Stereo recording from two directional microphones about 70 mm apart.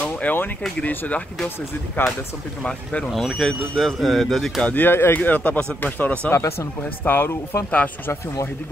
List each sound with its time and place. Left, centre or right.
0.0 s a sound: left
0.7 s speech: left
2.6 s speech: centre
3.2 s speech: centre
4.6 s speech: left
6.3 s speech: left
7.1 s speech: left